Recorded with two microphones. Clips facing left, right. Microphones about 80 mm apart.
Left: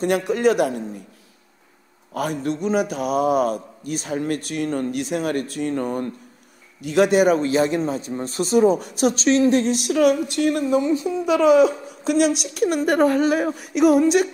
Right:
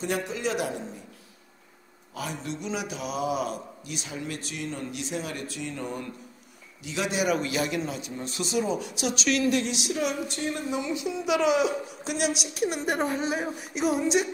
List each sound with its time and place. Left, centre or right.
0.0 s speech: left
2.1 s a man's voice: left
9.8 s speech: left
10.7 s a man's voice: left